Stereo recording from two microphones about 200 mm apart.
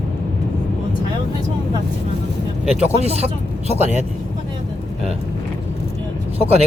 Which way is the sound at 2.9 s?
30° right (ahead or behind).